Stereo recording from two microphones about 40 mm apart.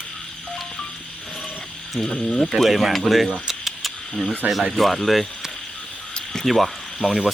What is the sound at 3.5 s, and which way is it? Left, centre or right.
Keys jangling, centre.